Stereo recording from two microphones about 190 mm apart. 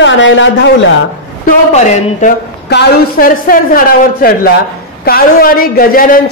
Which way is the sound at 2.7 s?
55° left (ahead or behind).